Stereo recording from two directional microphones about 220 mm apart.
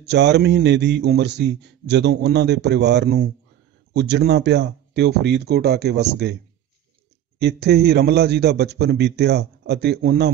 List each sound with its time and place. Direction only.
0.0 s a man's voice: 50° right (ahead or behind)
7.3 s a man's voice: 50° right (ahead or behind)